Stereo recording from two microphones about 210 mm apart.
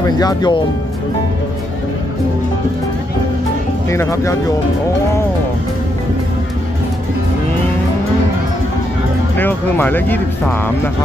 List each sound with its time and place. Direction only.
0.0 s speech: 20° left (ahead or behind)
3.9 s speech: 15° left (ahead or behind)
9.4 s speech: 10° left (ahead or behind)